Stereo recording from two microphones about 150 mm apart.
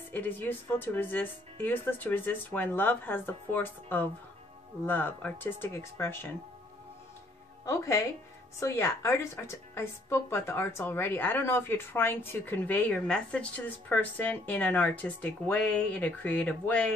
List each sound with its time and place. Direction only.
0.1 s a woman's voice: 15° left (ahead or behind)
7.6 s a woman's voice: 20° left (ahead or behind)